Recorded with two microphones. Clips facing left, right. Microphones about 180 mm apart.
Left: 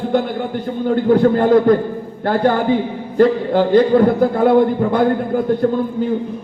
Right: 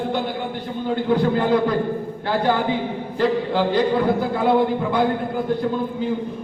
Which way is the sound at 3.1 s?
50° left (ahead or behind).